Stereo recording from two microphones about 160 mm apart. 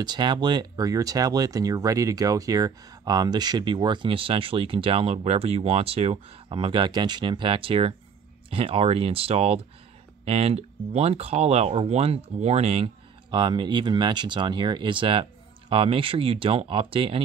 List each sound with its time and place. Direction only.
0.0 s speech: 25° right (ahead or behind)